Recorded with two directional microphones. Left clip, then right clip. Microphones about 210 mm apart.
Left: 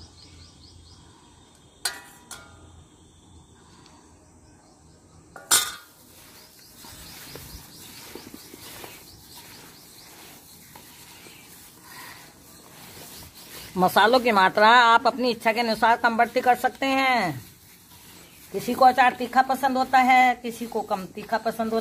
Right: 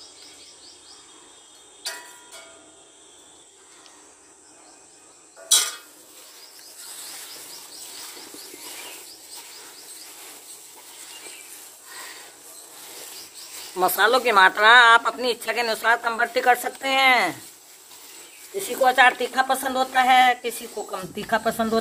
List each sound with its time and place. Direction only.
13.7 s a woman's voice: 15° left (ahead or behind)
18.6 s speech: 5° left (ahead or behind)